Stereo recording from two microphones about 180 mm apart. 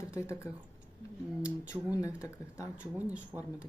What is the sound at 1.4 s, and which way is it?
Speech, 5° right (ahead or behind).